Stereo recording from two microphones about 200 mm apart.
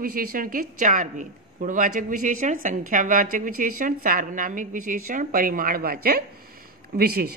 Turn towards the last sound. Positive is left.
turn(degrees=-50)  # may be behind; listen again after turning